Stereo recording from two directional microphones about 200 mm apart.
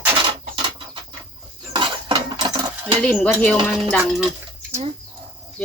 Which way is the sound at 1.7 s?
25° right (ahead or behind).